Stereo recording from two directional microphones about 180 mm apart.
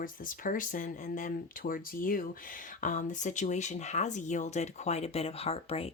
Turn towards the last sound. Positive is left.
turn(degrees=35)  # may be behind; listen again after turning